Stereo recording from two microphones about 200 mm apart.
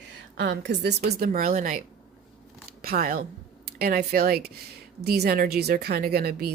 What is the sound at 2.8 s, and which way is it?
Speech, 50° right (ahead or behind).